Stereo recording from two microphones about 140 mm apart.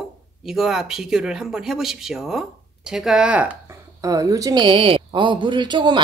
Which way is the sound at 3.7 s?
25° right (ahead or behind).